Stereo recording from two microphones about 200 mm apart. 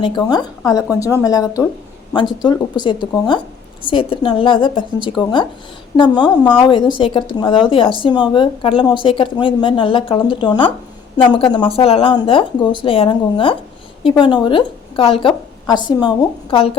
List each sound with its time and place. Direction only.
0.0 s speech: 20° left (ahead or behind)